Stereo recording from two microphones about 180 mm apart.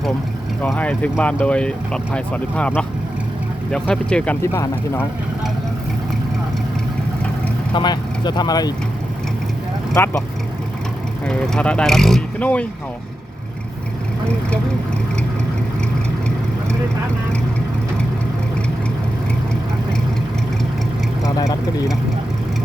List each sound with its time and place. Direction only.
0.6 s speech: 10° left (ahead or behind)
4.5 s speech: 15° left (ahead or behind)
7.7 s speech: 25° left (ahead or behind)
9.9 s speech: 10° left (ahead or behind)
11.3 s speech: 5° left (ahead or behind)